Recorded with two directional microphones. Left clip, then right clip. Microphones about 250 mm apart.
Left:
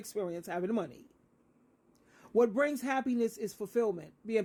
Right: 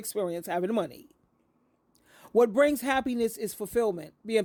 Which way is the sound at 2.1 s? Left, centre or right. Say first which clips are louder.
Right 5 dB; right.